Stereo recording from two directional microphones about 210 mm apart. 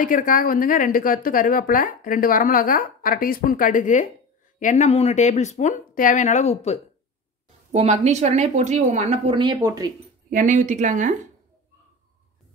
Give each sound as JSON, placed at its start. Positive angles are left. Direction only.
{"t": 0.0, "sound": "speech", "side_deg": 40}
{"t": 7.7, "sound": "a woman's voice", "side_deg": -30}
{"t": 10.3, "sound": "a woman's voice", "side_deg": -35}